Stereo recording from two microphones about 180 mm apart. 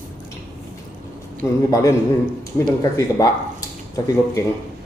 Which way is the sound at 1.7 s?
20° left (ahead or behind).